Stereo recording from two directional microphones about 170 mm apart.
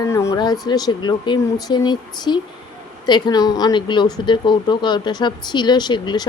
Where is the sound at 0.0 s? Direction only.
15° left (ahead or behind).